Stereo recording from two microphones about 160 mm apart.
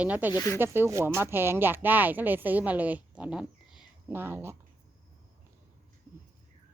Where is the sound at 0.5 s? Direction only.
15° right (ahead or behind).